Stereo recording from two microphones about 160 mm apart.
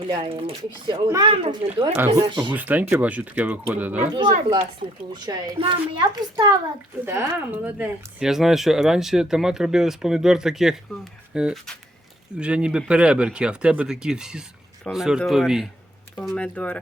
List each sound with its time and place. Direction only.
0.2 s speech: 35° right (ahead or behind)
2.0 s a child's voice: 20° right (ahead or behind)
2.5 s speech: 10° right (ahead or behind)
4.8 s a child's voice: 35° right (ahead or behind)
7.0 s speech: 15° right (ahead or behind); by 16.7 s 10° left (ahead or behind)